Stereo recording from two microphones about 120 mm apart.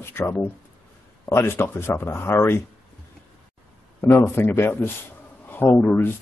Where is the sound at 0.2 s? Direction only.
20° left (ahead or behind).